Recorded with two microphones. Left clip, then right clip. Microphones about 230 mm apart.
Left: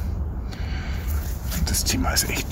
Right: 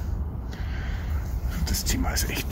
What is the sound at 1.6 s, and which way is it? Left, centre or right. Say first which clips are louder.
Speech: left 5 dB; centre.